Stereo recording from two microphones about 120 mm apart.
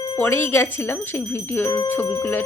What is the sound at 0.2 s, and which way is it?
Wind chime, 20° left (ahead or behind).